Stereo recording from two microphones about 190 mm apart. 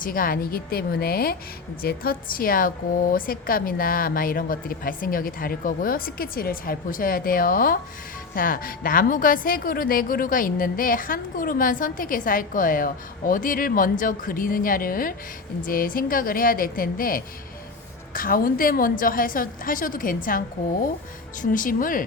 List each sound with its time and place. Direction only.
0.0 s a woman's voice: 50° left (ahead or behind)
21.4 s a woman's voice: 45° left (ahead or behind)